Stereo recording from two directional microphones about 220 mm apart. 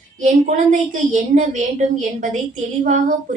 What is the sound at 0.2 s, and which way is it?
A woman's voice, 35° right (ahead or behind).